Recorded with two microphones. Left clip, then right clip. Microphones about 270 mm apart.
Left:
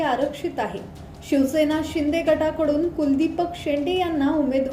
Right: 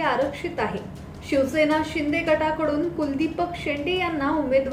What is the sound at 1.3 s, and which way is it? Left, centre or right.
A woman's voice, left.